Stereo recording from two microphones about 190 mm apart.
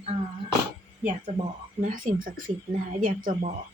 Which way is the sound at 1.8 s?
45° right (ahead or behind).